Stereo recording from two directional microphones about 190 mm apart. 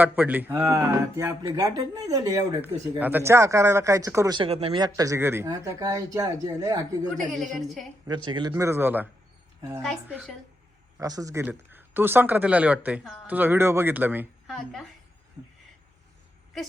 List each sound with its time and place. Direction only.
0.0 s speech: 10° right (ahead or behind)
7.3 s a woman's voice: centre (ahead or behind)
8.0 s a woman's voice: 25° right (ahead or behind)
9.8 s a woman's voice: 5° right (ahead or behind)
10.9 s speech: 20° right (ahead or behind)
14.4 s a woman's voice: centre (ahead or behind)